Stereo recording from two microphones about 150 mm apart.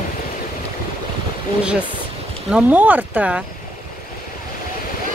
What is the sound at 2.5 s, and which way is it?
Speech, 10° right (ahead or behind).